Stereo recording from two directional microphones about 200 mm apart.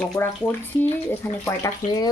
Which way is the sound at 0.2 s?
10° left (ahead or behind).